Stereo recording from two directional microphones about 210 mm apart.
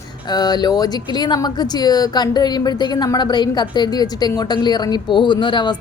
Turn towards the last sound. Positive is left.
turn(degrees=20)  # may be behind; listen again after turning